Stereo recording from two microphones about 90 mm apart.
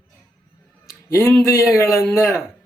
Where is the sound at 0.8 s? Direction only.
35° left (ahead or behind).